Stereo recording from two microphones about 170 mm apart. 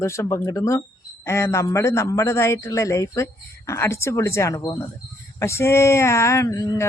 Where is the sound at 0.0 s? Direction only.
15° left (ahead or behind).